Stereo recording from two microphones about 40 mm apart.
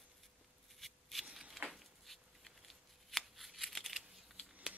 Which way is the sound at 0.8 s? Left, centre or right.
Centre.